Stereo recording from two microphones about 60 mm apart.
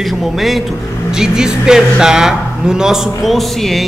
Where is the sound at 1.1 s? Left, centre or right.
Centre.